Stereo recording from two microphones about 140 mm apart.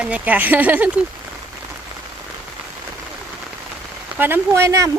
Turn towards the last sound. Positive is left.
turn(degrees=-20)  # may be behind; listen again after turning